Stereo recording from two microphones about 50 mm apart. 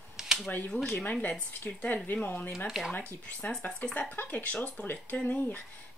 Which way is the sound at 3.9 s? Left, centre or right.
Left.